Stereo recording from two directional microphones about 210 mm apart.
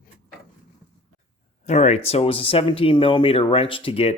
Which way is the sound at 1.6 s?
35° left (ahead or behind).